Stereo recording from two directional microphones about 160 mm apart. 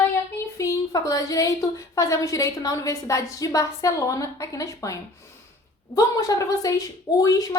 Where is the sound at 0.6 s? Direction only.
20° left (ahead or behind).